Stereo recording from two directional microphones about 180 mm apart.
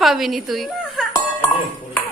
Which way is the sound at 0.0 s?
Centre (ahead or behind).